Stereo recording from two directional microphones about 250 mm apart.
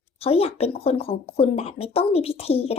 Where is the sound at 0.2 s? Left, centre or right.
Left.